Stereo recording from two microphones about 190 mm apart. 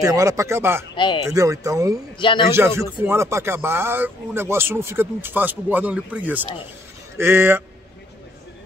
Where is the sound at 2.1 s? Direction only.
25° left (ahead or behind).